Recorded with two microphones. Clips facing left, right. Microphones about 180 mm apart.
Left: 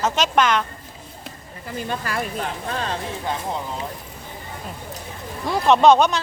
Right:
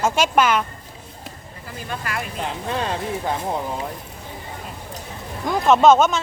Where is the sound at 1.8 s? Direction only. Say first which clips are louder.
Left 2 dB; 35° left (ahead or behind).